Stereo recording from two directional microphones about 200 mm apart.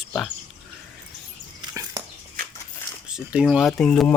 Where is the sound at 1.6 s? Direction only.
15° right (ahead or behind).